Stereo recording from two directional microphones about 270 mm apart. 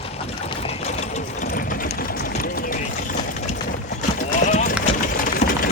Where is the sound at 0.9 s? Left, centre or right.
Left.